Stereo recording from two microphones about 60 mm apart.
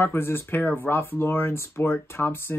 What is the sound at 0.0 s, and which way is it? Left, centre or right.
Speech, left.